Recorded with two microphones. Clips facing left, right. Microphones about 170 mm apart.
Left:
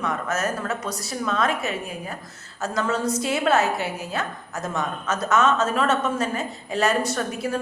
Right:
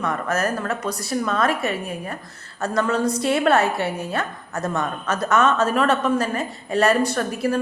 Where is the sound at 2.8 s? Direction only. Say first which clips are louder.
Right 3 dB; centre (ahead or behind).